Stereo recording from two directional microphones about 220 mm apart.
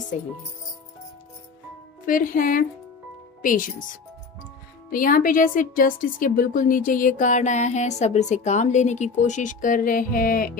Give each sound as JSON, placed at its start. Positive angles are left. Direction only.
{"t": 0.1, "sound": "a woman's voice", "side_deg": 35}
{"t": 2.0, "sound": "a woman's voice", "side_deg": 40}
{"t": 4.9, "sound": "a woman's voice", "side_deg": 40}